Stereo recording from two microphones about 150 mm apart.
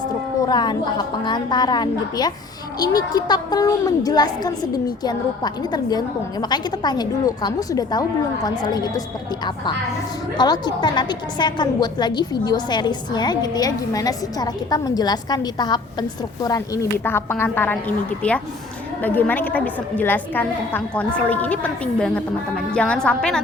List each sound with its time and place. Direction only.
0.4 s a woman's voice: 30° left (ahead or behind)
10.3 s a woman's voice: 30° left (ahead or behind); by 23.4 s 5° left (ahead or behind)